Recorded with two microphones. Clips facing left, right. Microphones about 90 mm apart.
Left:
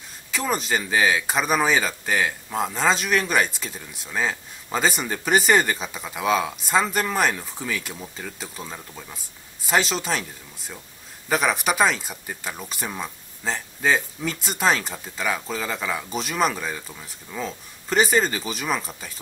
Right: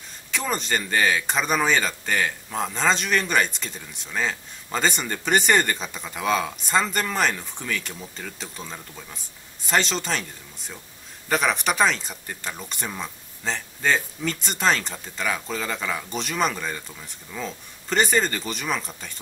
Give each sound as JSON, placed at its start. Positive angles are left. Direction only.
{"t": 0.3, "sound": "a man's voice", "side_deg": 5}